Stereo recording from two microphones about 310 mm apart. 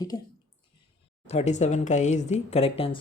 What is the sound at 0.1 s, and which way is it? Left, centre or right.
Speech, centre.